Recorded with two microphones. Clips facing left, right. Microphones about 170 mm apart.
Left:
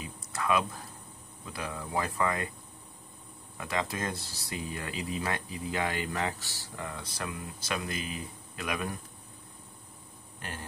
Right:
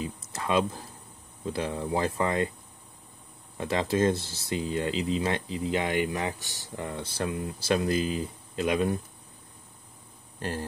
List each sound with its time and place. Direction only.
0.0 s speech: 25° right (ahead or behind)
3.5 s speech: 30° right (ahead or behind)